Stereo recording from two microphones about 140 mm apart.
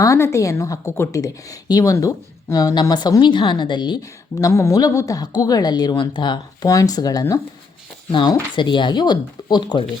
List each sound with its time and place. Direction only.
0.0 s speech: 20° left (ahead or behind)